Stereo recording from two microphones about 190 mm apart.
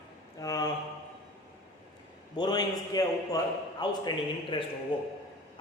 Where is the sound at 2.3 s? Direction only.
20° left (ahead or behind).